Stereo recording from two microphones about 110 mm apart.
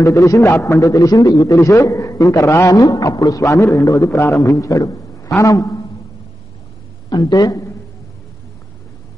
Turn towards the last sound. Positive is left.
turn(degrees=30)  # may be behind; listen again after turning